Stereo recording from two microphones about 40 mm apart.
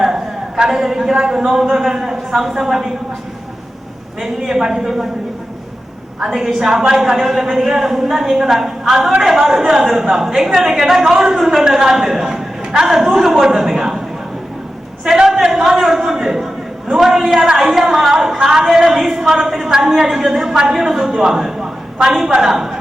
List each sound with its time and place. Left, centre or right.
0.6 s a woman's voice: centre
4.2 s a woman's voice: centre
6.3 s a woman's voice: centre
11.1 s a woman's voice: centre
15.0 s a sound: centre
15.4 s a woman's voice: centre